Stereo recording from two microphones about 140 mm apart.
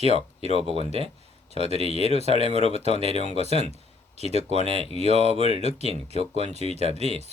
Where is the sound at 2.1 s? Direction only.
45° right (ahead or behind).